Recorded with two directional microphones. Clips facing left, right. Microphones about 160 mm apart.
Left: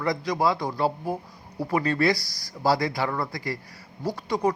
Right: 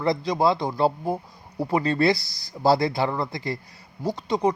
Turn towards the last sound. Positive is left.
turn(degrees=-20)  # may be behind; listen again after turning